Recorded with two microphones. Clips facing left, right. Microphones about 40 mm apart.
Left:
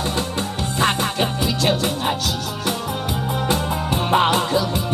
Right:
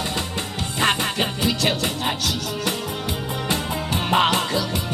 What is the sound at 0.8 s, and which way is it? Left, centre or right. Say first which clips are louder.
Music: left 1 dB; right.